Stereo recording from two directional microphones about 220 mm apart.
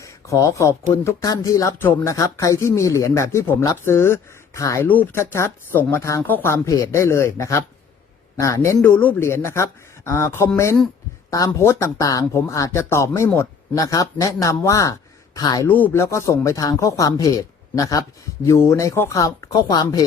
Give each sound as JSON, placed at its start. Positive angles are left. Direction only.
{"t": 0.0, "sound": "a man's voice", "side_deg": 15}
{"t": 15.6, "sound": "speech", "side_deg": 10}